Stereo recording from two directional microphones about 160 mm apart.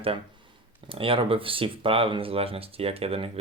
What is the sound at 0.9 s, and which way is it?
Speech, 35° right (ahead or behind).